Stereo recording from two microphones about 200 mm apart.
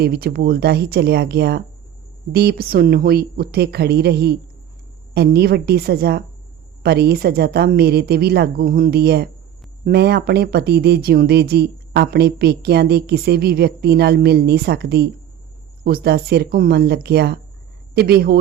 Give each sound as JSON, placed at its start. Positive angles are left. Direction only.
{"t": 0.0, "sound": "speech", "side_deg": -50}